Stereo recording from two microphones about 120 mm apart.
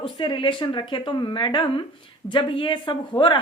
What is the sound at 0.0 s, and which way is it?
Speech, 45° left (ahead or behind).